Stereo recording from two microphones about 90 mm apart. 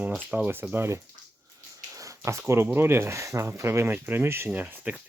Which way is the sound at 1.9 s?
35° right (ahead or behind).